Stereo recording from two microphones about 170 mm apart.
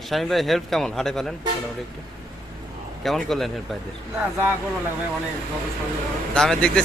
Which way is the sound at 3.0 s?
Centre (ahead or behind).